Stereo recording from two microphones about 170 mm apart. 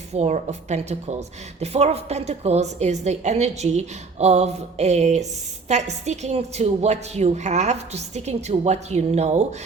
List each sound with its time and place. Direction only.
0.1 s a woman's voice: 40° right (ahead or behind)